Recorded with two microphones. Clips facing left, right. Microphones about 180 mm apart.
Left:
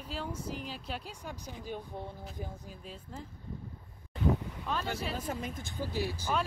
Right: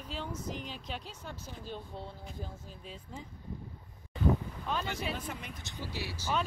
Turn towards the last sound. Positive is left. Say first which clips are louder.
# left 6 dB
turn(degrees=45)  # may be behind; listen again after turning